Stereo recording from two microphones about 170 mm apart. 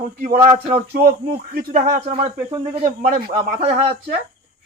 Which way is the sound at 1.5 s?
55° right (ahead or behind).